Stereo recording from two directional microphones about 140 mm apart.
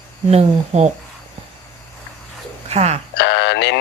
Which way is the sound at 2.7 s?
50° right (ahead or behind).